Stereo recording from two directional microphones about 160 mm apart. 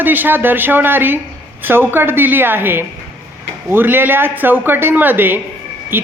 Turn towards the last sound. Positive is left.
turn(degrees=-15)  # may be behind; listen again after turning